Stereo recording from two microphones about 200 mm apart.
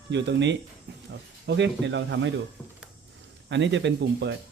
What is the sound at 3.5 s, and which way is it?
Speech, 65° right (ahead or behind).